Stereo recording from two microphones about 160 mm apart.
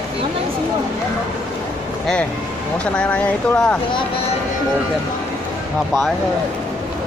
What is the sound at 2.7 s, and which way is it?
Speech, 5° left (ahead or behind).